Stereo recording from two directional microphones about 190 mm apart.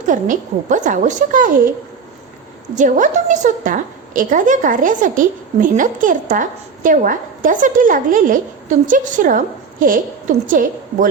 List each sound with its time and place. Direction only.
0.0 s a woman's voice: 45° right (ahead or behind)
2.7 s a woman's voice: 40° right (ahead or behind)